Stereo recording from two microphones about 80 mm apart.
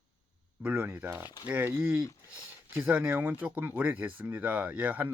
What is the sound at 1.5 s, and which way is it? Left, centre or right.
Speech, right.